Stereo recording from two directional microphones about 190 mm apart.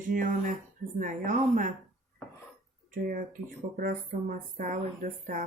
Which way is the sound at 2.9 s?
45° right (ahead or behind).